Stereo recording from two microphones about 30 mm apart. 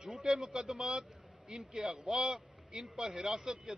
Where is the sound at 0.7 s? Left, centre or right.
Centre.